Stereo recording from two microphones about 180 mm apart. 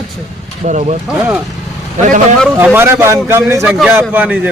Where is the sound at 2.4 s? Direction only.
10° right (ahead or behind).